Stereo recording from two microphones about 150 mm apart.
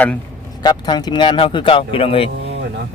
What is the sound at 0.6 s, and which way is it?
Speech, 30° left (ahead or behind).